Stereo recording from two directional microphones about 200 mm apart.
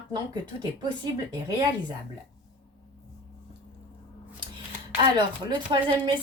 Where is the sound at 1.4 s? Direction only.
20° right (ahead or behind).